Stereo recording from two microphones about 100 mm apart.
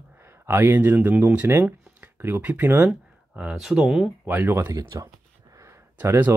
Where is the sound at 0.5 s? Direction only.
25° right (ahead or behind); by 4.1 s 5° right (ahead or behind).